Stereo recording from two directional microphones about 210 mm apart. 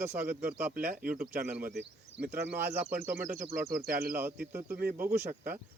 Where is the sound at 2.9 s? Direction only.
40° right (ahead or behind).